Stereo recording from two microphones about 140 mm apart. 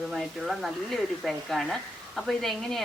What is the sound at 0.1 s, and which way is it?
Speech, centre (ahead or behind).